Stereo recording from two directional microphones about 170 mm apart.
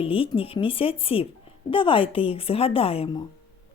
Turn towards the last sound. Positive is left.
turn(degrees=30)  # may be behind; listen again after turning